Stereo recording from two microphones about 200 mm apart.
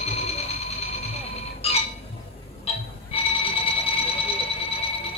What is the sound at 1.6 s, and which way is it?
Music, 30° left (ahead or behind).